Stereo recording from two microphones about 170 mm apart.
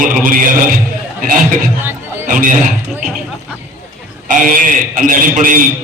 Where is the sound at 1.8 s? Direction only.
15° right (ahead or behind).